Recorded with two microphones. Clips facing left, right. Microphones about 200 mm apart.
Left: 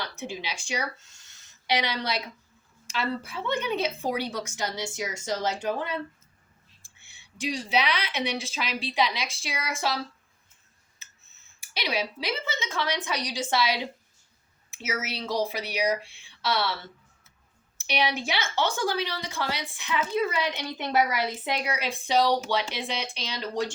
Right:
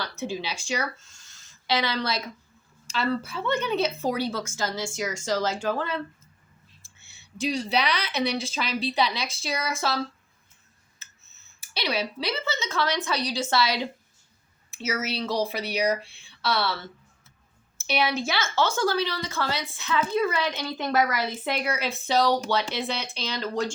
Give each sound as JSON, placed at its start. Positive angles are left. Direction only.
{"t": 0.0, "sound": "speech", "side_deg": 15}
{"t": 6.8, "sound": "a sound", "side_deg": 15}
{"t": 7.9, "sound": "a woman's voice", "side_deg": -40}
{"t": 9.0, "sound": "speech", "side_deg": 15}
{"t": 9.4, "sound": "a woman's voice", "side_deg": -40}
{"t": 9.7, "sound": "speech", "side_deg": 15}
{"t": 11.6, "sound": "a sound", "side_deg": 15}
{"t": 12.2, "sound": "speech", "side_deg": 15}
{"t": 15.4, "sound": "speech", "side_deg": 10}
{"t": 17.7, "sound": "speech", "side_deg": 15}